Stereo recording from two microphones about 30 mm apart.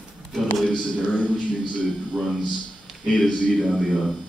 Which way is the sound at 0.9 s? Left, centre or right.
Left.